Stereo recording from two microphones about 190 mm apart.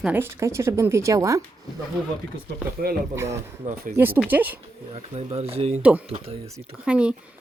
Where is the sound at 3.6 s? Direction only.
40° right (ahead or behind).